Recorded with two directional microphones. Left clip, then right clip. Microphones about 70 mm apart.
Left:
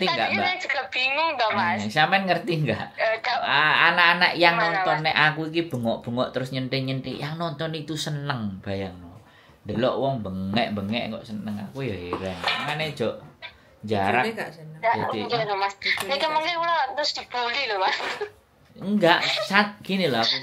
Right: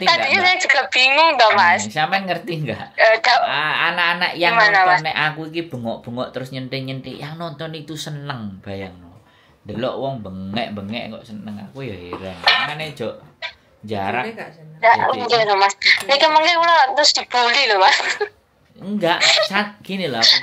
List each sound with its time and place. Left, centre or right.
0.3 s a woman's voice: right
1.9 s speech: centre
3.0 s a woman's voice: right
3.4 s speech: centre
4.6 s a woman's voice: right
5.0 s speech: centre
14.2 s a woman's voice: left
14.8 s a woman's voice: right
18.9 s speech: centre
19.1 s a woman's voice: right
19.5 s speech: centre